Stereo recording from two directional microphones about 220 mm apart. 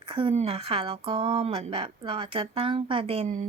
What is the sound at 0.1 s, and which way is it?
A woman's voice, 25° right (ahead or behind).